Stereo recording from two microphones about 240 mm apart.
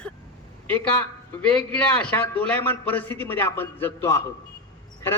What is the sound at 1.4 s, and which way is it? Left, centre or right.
A man's voice, centre.